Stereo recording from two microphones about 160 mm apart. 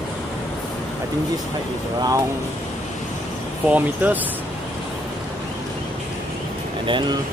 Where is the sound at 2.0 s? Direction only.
20° right (ahead or behind).